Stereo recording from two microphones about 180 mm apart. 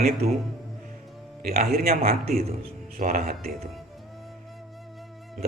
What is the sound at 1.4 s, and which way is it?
Speech, 60° right (ahead or behind).